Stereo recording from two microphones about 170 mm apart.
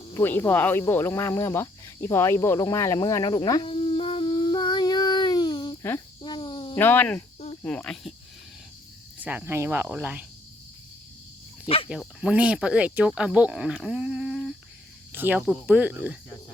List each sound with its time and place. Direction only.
0.1 s cricket: 15° left (ahead or behind); by 6.7 s 30° left (ahead or behind)
6.7 s speech: 10° left (ahead or behind)
9.2 s cricket: 15° right (ahead or behind)
11.9 s speech: 5° right (ahead or behind)
15.1 s cricket: 10° right (ahead or behind)